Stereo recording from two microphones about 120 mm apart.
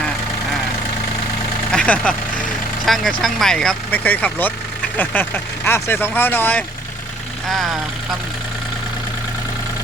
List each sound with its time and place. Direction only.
1.7 s speech: 10° left (ahead or behind)
7.4 s speech: centre (ahead or behind)